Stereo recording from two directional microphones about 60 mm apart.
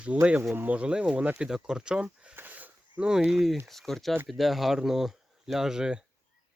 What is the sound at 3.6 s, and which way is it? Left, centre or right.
Speech, centre.